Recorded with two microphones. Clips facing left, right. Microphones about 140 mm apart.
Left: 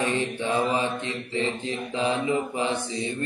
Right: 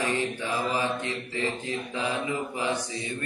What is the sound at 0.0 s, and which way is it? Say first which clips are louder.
Mantra: left 2 dB; 25° left (ahead or behind).